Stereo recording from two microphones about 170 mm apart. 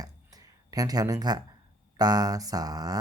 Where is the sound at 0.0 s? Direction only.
20° right (ahead or behind).